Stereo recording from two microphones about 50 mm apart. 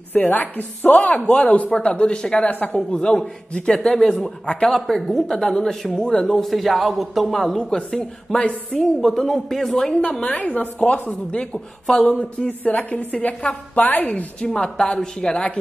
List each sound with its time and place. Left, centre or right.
0.1 s speech: left; by 2.2 s centre
2.5 s speech: left
2.9 s a man's voice: centre
4.8 s a man's voice: centre
9.8 s speech: left
10.1 s a man's voice: centre
10.4 s speech: left
11.5 s a man's voice: centre
12.4 s speech: left
14.1 s a man's voice: left
15.3 s speech: left